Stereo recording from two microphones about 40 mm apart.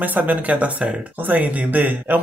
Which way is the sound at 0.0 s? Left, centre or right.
Right.